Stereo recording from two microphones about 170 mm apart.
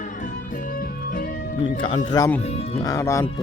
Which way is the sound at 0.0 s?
50° left (ahead or behind).